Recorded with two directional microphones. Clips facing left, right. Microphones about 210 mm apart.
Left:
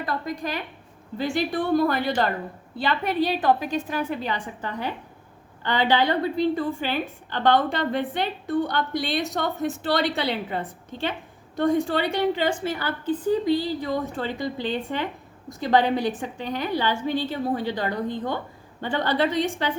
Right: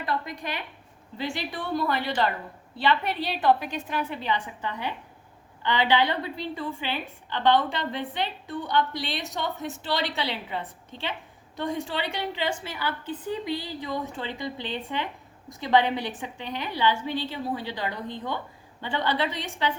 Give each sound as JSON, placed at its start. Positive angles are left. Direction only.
{"t": 0.0, "sound": "a woman's voice", "side_deg": 40}